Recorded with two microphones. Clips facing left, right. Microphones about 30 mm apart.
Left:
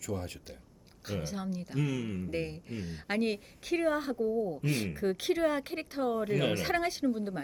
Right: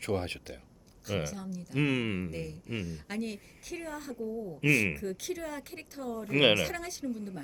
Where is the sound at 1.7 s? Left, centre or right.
Right.